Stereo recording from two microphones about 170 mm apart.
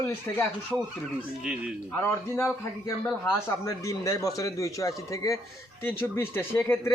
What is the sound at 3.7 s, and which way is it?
A man's voice, 20° left (ahead or behind).